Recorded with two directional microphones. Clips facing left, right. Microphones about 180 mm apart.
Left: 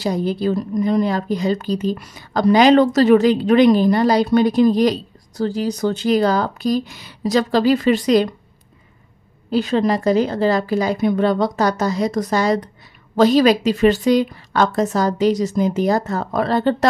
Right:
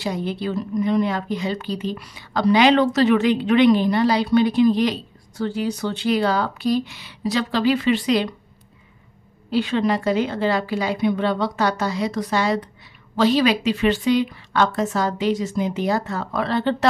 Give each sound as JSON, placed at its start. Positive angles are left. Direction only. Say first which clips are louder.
{"t": 0.0, "sound": "speech", "louder": "left 5 dB", "side_deg": 40}
{"t": 9.5, "sound": "speech", "louder": "left 3 dB", "side_deg": 40}